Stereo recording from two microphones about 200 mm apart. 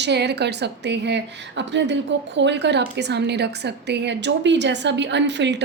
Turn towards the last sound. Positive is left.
turn(degrees=-60)  # may be behind; listen again after turning